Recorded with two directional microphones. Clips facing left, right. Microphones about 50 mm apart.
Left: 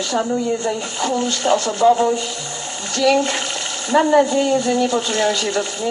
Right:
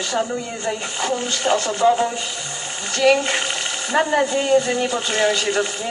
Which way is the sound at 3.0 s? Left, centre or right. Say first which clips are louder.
Even; right.